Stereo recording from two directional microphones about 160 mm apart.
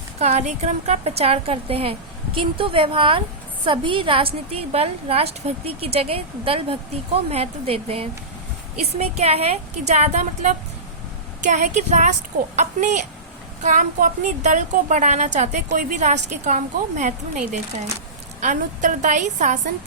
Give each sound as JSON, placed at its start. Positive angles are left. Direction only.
{"t": 0.2, "sound": "a woman's voice", "side_deg": -45}